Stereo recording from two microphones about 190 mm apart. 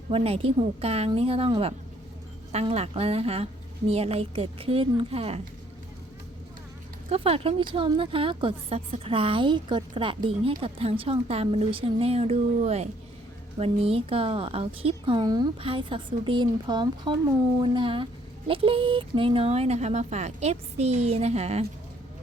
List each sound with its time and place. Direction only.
0.1 s speech: 30° right (ahead or behind)
7.1 s a woman's voice: 30° right (ahead or behind)